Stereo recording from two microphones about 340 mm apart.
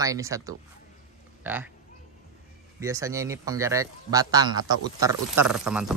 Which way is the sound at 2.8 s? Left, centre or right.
Centre.